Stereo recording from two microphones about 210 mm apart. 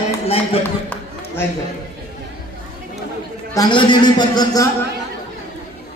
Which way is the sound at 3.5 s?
20° left (ahead or behind).